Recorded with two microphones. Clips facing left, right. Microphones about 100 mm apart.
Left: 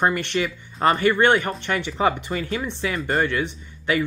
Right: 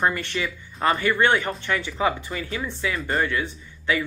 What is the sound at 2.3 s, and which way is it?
Speech, 35° left (ahead or behind).